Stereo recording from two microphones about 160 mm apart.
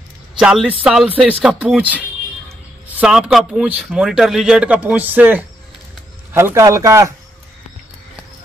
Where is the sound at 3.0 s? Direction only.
5° right (ahead or behind); by 7.1 s 20° right (ahead or behind).